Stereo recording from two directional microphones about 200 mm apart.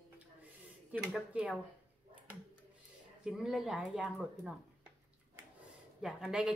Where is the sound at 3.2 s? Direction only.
5° right (ahead or behind).